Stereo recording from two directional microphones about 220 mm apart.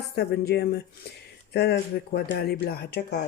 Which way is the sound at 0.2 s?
50° left (ahead or behind).